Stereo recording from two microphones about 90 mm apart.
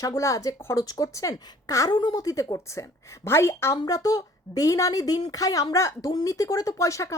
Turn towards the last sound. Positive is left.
turn(degrees=35)  # may be behind; listen again after turning